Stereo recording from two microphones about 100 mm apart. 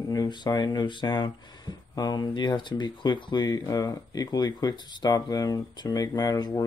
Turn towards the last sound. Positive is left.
turn(degrees=40)  # may be behind; listen again after turning